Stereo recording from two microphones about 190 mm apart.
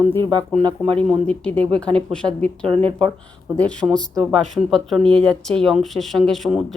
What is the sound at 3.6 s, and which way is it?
Speech, 5° left (ahead or behind).